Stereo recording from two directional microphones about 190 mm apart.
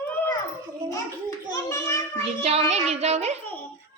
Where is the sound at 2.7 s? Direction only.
35° right (ahead or behind).